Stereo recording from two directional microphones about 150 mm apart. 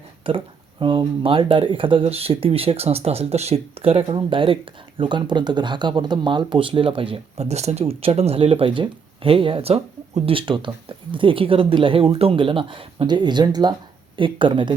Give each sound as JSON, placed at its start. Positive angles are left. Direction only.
{"t": 0.3, "sound": "speech", "side_deg": -35}